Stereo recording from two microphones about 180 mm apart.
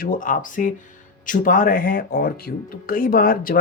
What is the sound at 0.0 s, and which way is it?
Speech, 50° left (ahead or behind).